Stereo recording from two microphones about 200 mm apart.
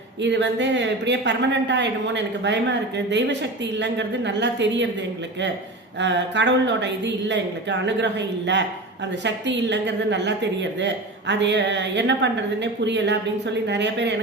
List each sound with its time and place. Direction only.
0.2 s a woman's voice: 60° right (ahead or behind)
6.0 s a woman's voice: 60° right (ahead or behind)